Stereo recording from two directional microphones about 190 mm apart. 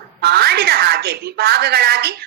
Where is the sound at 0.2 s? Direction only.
55° right (ahead or behind).